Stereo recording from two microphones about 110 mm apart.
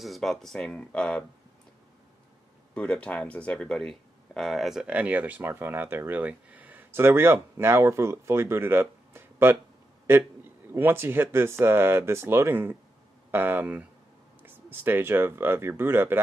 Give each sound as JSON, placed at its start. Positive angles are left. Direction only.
{"t": 0.0, "sound": "speech", "side_deg": 0}
{"t": 2.7, "sound": "speech", "side_deg": 10}
{"t": 10.7, "sound": "speech", "side_deg": -20}